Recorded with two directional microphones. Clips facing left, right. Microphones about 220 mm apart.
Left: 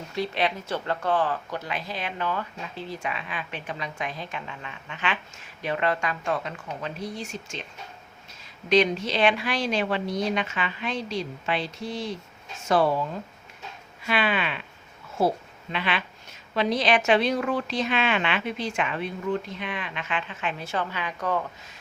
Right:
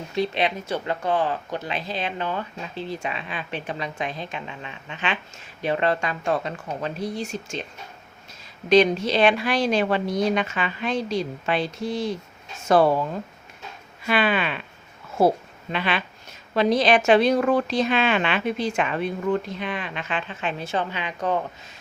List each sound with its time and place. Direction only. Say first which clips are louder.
0.1 s a woman's voice: right 3 dB; 20° right (ahead or behind); by 7.5 s 40° right (ahead or behind)
8.7 s speech: right 4 dB; 35° right (ahead or behind)
14.1 s speech: right 4 dB; 45° right (ahead or behind)
15.7 s a woman's voice: right 3 dB; 40° right (ahead or behind)
20.7 s speech: right 3 dB; 20° right (ahead or behind)